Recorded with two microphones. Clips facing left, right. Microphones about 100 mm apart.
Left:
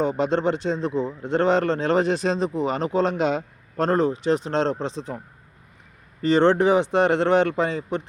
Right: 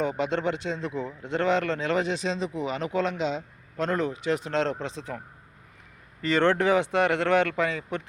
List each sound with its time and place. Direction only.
0.0 s a man's voice: 30° left (ahead or behind)
3.2 s speech: 55° left (ahead or behind)
3.8 s speech: 30° left (ahead or behind)
6.2 s speech: 25° left (ahead or behind)